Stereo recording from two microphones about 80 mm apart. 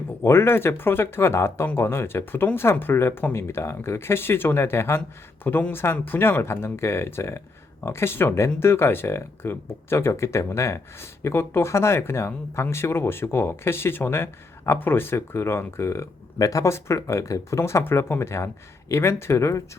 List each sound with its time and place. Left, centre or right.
0.2 s speech: left